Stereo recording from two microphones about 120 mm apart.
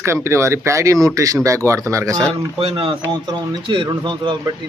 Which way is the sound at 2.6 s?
50° right (ahead or behind).